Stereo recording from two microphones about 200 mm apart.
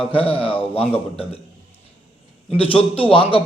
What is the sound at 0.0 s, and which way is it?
A man's voice, 30° left (ahead or behind).